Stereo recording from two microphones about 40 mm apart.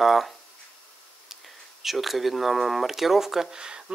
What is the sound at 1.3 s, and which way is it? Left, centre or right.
Speech, centre.